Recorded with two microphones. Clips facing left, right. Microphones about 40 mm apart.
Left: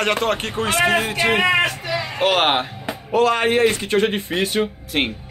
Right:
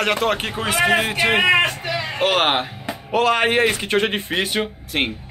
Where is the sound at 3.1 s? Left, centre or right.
Centre.